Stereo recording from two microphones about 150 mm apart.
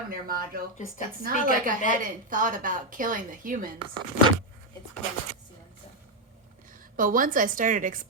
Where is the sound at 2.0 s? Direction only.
60° right (ahead or behind).